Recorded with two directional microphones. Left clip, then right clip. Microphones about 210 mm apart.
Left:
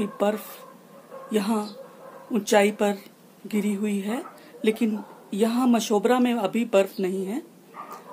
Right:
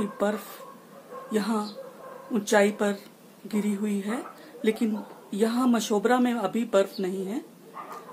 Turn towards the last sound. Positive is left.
turn(degrees=35)  # may be behind; listen again after turning